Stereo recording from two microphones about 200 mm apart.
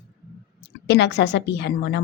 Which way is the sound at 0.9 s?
60° left (ahead or behind).